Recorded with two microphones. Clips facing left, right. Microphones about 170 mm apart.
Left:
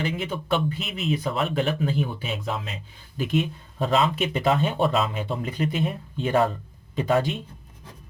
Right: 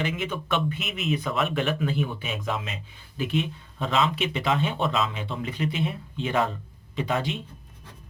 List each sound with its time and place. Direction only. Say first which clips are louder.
0.0 s speech: left 1 dB; 35° left (ahead or behind)